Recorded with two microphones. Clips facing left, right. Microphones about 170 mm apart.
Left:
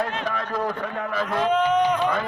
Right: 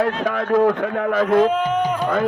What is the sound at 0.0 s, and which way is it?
A man's voice, 60° right (ahead or behind).